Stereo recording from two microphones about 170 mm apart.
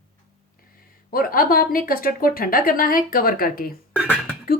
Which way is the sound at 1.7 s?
60° left (ahead or behind).